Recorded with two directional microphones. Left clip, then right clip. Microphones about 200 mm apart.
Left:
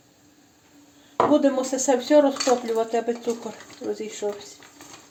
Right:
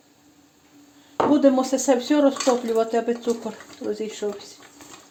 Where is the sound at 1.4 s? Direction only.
25° right (ahead or behind).